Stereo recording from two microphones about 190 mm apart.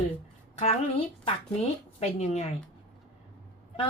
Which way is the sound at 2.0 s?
35° left (ahead or behind).